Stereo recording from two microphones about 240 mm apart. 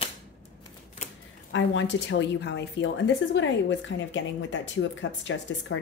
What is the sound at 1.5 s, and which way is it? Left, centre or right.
A woman's voice, left.